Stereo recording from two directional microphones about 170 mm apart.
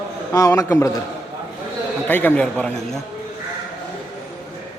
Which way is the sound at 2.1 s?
10° left (ahead or behind).